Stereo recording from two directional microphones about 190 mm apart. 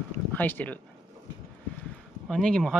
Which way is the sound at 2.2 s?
Centre (ahead or behind).